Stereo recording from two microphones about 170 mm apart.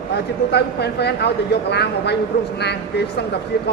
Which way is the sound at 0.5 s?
80° left.